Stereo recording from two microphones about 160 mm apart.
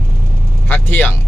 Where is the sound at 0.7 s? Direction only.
10° left (ahead or behind).